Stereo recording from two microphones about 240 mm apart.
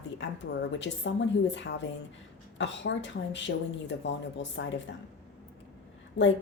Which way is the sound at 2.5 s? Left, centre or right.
Left.